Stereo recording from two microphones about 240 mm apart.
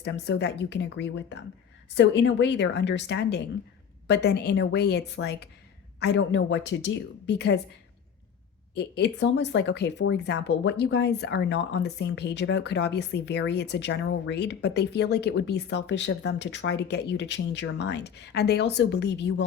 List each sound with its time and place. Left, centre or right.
0.0 s speech: left
8.7 s speech: left